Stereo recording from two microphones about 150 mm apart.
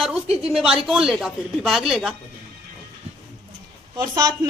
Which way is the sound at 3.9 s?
25° right (ahead or behind).